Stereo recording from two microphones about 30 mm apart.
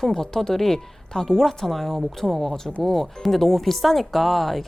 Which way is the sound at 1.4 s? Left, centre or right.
Centre.